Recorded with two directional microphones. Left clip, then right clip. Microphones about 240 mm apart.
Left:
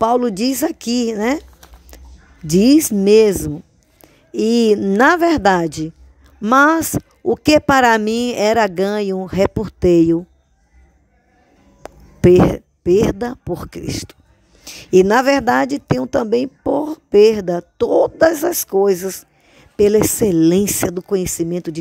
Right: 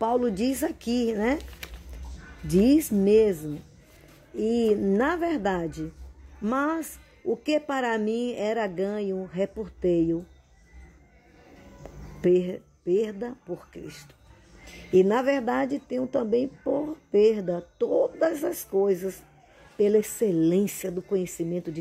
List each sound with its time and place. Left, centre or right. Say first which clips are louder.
0.0 s speech: left 9 dB; left
2.4 s speech: left 9 dB; left
11.8 s speech: left 12 dB; left